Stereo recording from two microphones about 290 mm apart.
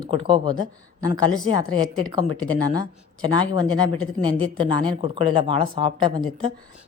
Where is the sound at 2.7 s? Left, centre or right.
Centre.